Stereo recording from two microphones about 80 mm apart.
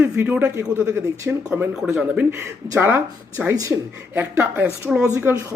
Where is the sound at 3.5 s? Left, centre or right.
Right.